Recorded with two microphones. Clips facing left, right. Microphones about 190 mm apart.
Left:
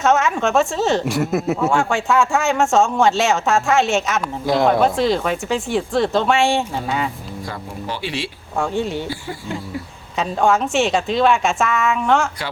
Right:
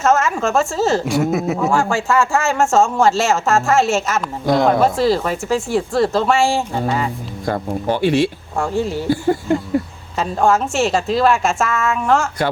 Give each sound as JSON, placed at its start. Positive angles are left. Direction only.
{"t": 0.0, "sound": "a woman's voice", "side_deg": 0}
{"t": 7.4, "sound": "speech", "side_deg": -50}
{"t": 8.5, "sound": "a woman's voice", "side_deg": 0}
{"t": 9.0, "sound": "speech", "side_deg": -50}
{"t": 10.2, "sound": "a woman's voice", "side_deg": 0}